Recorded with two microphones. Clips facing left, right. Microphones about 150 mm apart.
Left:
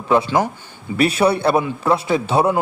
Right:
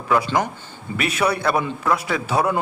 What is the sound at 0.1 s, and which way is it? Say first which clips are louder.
Speech: left 3 dB; 25° left (ahead or behind).